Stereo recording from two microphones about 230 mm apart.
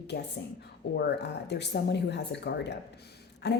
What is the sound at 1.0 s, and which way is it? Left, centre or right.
Speech, left.